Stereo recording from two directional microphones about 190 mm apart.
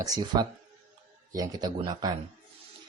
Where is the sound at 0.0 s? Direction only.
20° right (ahead or behind).